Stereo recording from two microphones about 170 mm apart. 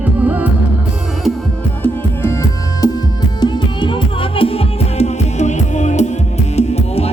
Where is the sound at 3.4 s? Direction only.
25° left (ahead or behind).